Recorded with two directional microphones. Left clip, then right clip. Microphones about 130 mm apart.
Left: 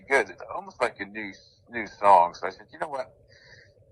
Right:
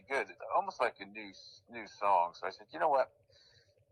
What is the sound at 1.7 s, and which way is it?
A man's voice, 55° left (ahead or behind).